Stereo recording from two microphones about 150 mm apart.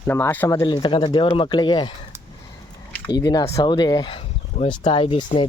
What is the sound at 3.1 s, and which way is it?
Speech, 25° left (ahead or behind).